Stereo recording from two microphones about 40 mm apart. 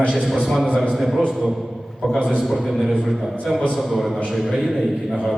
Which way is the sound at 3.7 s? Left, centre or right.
Centre.